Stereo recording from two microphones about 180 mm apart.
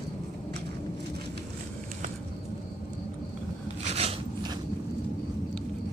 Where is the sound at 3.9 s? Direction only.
35° right (ahead or behind).